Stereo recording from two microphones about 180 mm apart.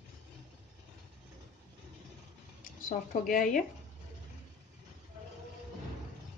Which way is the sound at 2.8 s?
50° left (ahead or behind).